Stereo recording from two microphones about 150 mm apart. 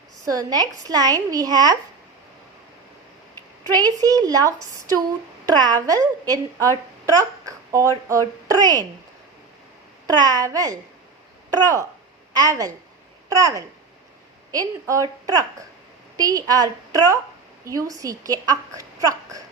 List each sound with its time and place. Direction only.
0.3 s a woman's voice: 25° right (ahead or behind)
3.7 s a woman's voice: 25° right (ahead or behind)
7.0 s a sound: 25° right (ahead or behind)
8.1 s a woman's voice: 20° right (ahead or behind)
10.1 s a woman's voice: 25° right (ahead or behind)
16.1 s a woman's voice: 25° right (ahead or behind)